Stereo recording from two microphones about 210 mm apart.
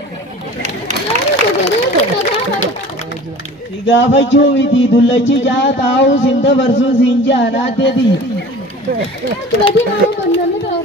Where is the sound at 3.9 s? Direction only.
60° left (ahead or behind).